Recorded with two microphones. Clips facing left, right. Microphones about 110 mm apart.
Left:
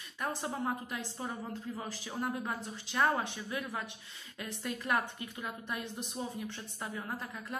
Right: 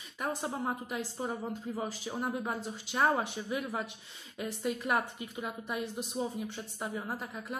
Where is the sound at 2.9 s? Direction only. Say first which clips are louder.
Right 2 dB; 20° right (ahead or behind).